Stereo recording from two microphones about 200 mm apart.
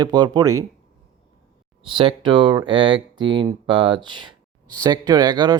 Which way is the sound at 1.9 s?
25° right (ahead or behind).